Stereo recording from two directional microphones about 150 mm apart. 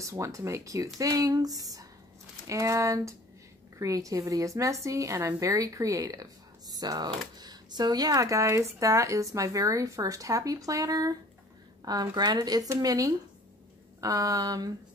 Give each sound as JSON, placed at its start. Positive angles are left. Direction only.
{"t": 0.0, "sound": "speech", "side_deg": -20}